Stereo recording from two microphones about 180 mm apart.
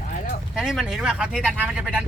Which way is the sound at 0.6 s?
5° right (ahead or behind).